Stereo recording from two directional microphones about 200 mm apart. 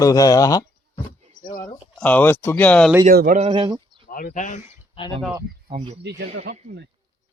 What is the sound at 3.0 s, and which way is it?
Speech, 45° right (ahead or behind).